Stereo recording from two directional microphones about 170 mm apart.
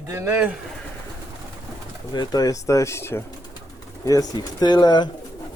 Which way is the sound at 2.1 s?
25° left (ahead or behind).